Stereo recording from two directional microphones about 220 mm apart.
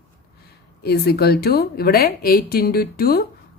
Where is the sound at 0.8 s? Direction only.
45° left (ahead or behind).